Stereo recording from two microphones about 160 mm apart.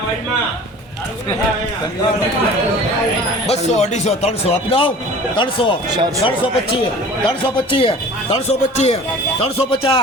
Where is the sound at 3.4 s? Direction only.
45° left (ahead or behind).